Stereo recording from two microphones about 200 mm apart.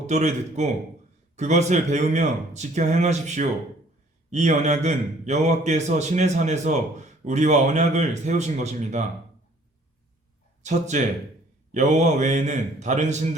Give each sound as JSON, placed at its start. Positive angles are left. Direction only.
{"t": 0.1, "sound": "a man's voice", "side_deg": -35}
{"t": 10.6, "sound": "a man's voice", "side_deg": -35}